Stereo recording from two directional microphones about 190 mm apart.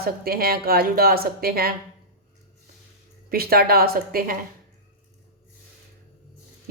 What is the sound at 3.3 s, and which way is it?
A woman's voice, 55° right (ahead or behind).